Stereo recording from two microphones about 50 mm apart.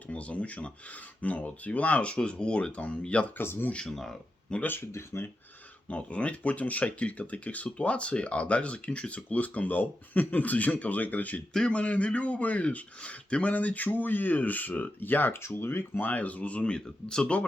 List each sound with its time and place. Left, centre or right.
0.1 s speech: left
3.3 s speech: left
3.7 s speech: centre
4.9 s speech: left
5.9 s speech: left
15.4 s speech: left
16.0 s speech: left